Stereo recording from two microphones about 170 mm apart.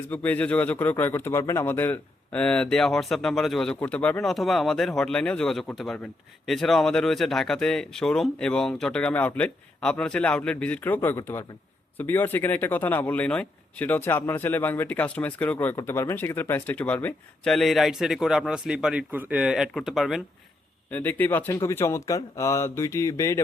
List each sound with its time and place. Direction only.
0.1 s speech: 10° left (ahead or behind)
20.9 s speech: 10° left (ahead or behind)